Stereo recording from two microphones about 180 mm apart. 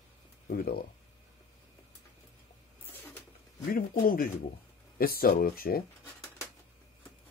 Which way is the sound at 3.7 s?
50° left (ahead or behind).